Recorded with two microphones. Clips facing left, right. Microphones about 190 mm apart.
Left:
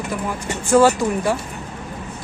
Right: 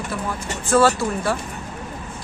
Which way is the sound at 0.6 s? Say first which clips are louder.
Left 3 dB; 15° left (ahead or behind).